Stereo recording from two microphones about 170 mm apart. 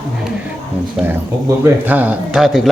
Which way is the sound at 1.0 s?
Centre (ahead or behind).